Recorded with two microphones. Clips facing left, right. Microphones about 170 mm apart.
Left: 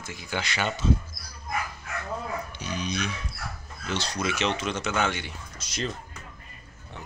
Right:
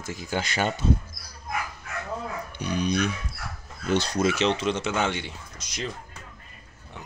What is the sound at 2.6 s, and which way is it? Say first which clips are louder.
Speech: right 8 dB; 55° right (ahead or behind).